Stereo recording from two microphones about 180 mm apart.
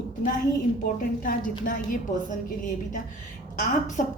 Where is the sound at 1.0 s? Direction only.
50° left (ahead or behind).